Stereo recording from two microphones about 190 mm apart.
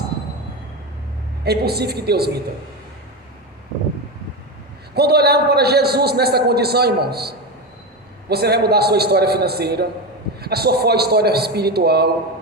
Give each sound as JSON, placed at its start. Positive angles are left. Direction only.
{"t": 1.5, "sound": "a man's voice", "side_deg": -55}
{"t": 4.9, "sound": "a man's voice", "side_deg": -55}